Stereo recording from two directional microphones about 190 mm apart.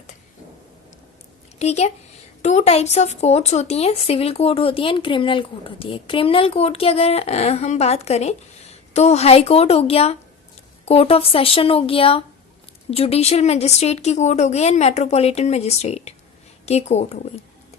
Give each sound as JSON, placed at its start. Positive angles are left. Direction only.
{"t": 1.5, "sound": "a woman's voice", "side_deg": 35}